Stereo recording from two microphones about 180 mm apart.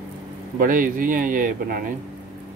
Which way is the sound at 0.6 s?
50° right (ahead or behind).